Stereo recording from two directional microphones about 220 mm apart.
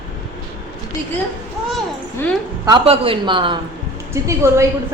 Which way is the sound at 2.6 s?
25° right (ahead or behind).